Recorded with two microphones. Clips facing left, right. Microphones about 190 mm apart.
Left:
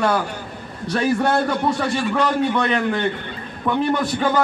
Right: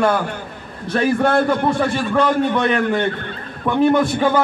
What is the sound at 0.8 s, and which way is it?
Speech, 55° right (ahead or behind).